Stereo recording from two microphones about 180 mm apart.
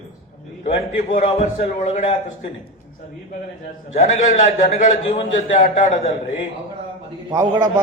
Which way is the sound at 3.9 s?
35° left (ahead or behind).